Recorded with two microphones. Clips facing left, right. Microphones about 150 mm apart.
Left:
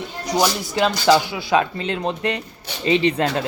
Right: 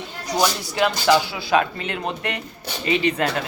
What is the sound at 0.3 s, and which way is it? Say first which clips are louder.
Speech: left 1 dB; 20° left (ahead or behind).